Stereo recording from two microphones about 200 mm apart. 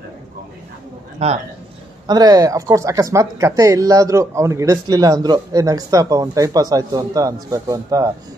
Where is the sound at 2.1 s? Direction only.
20° right (ahead or behind).